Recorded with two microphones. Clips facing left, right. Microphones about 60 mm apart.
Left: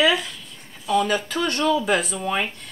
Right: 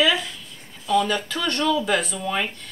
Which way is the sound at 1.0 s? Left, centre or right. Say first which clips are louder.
Left 2 dB; centre.